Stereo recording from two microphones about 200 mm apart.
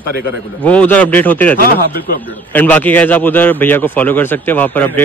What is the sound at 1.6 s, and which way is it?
Speech, 45° left (ahead or behind).